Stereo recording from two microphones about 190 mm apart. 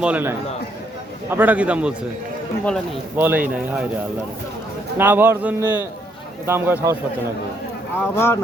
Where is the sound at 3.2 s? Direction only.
10° right (ahead or behind).